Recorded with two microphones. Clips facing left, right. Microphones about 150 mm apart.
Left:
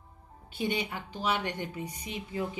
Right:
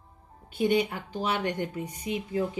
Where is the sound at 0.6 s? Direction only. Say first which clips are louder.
Right 7 dB; 50° right (ahead or behind).